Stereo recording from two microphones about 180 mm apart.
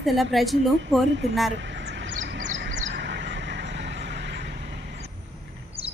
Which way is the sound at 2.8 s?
75° right (ahead or behind).